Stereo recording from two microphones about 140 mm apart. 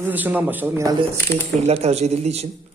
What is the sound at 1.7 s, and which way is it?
Speech, 50° right (ahead or behind).